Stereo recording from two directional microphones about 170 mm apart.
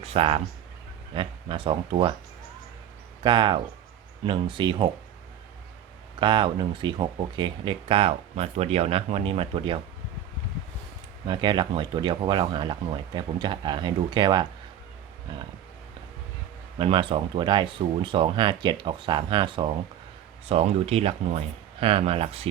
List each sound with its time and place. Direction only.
0.0 s speech: 35° right (ahead or behind)
3.2 s speech: 25° right (ahead or behind)
6.1 s speech: 30° right (ahead or behind)
11.3 s speech: 25° right (ahead or behind)
16.7 s speech: 30° right (ahead or behind)